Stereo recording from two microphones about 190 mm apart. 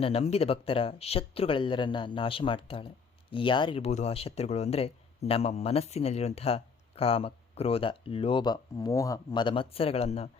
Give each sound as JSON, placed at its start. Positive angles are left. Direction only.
{"t": 0.0, "sound": "speech", "side_deg": 30}